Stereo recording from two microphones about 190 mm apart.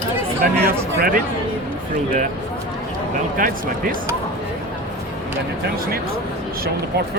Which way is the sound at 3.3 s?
45° right (ahead or behind).